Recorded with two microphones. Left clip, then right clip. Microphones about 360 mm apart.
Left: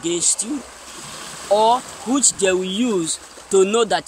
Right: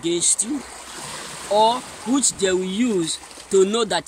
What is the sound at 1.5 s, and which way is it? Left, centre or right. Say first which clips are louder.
Speech: left 2 dB; centre.